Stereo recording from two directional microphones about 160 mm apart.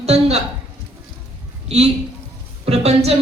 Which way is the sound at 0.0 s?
40° right (ahead or behind).